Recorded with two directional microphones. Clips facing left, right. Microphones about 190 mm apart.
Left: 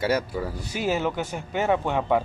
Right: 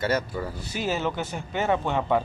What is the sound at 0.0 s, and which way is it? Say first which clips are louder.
Speech: left 2 dB; 10° left (ahead or behind).